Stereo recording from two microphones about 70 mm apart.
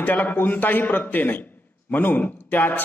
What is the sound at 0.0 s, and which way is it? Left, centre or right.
A man's voice, left.